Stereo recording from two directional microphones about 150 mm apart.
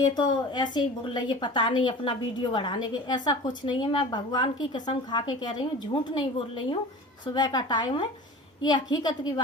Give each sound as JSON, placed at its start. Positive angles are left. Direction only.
{"t": 0.1, "sound": "a woman's voice", "side_deg": 30}
{"t": 7.3, "sound": "a woman's voice", "side_deg": 30}